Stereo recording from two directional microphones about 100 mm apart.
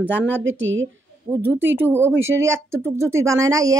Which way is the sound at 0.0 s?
15° right (ahead or behind).